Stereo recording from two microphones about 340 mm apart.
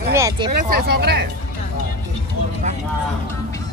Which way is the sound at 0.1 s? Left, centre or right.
Centre.